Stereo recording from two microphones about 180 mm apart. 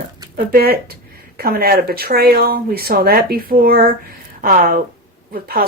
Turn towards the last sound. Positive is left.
turn(degrees=-55)  # may be behind; listen again after turning